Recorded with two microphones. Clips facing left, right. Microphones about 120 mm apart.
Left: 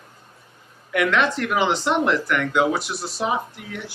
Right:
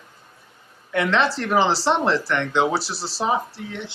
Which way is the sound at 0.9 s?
30° right (ahead or behind).